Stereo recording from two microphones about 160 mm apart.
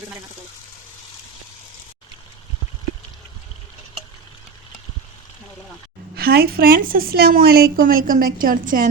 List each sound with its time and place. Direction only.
6.1 s a woman's voice: 75° right (ahead or behind)